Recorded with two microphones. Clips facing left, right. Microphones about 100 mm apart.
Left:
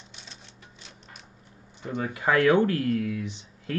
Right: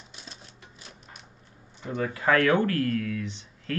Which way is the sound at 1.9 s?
20° left (ahead or behind).